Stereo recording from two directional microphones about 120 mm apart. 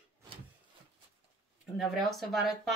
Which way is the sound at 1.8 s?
Centre (ahead or behind).